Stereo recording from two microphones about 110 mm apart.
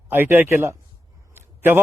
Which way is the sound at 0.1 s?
20° right (ahead or behind).